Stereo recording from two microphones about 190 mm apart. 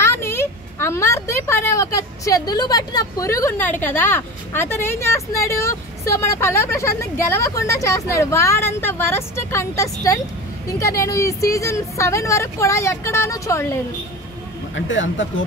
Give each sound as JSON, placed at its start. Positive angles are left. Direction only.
{"t": 0.0, "sound": "speech", "side_deg": 15}
{"t": 14.9, "sound": "speech", "side_deg": 85}